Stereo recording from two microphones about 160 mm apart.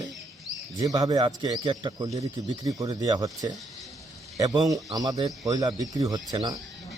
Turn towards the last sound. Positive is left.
turn(degrees=-25)  # may be behind; listen again after turning